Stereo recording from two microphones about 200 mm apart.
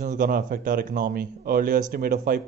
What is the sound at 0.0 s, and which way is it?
Speech, 40° right (ahead or behind).